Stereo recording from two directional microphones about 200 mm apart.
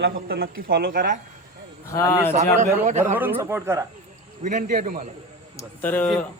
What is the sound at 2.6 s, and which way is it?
Speech, 40° right (ahead or behind).